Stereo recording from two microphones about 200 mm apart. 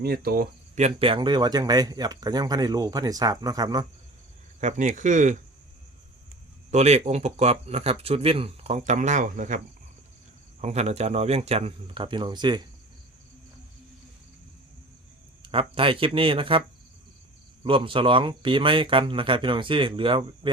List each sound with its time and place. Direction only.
0.0 s speech: 50° right (ahead or behind)
0.8 s speech: 30° right (ahead or behind)
4.6 s speech: 40° right (ahead or behind)
6.7 s speech: 35° right (ahead or behind)
10.6 s speech: 30° right (ahead or behind)
15.4 s speech: 25° right (ahead or behind)